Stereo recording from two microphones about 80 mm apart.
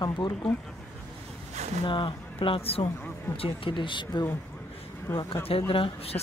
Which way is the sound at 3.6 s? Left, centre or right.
Left.